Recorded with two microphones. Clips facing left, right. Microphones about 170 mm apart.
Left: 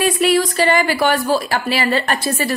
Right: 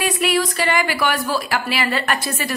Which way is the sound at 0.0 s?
30° left (ahead or behind).